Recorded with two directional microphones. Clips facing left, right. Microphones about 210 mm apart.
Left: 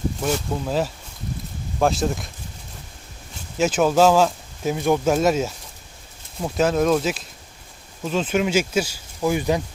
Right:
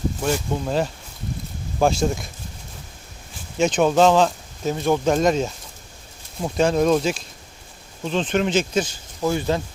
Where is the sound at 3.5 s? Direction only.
5° left (ahead or behind).